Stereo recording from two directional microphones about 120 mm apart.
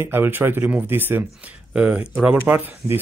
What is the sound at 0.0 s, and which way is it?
Speech, 20° right (ahead or behind).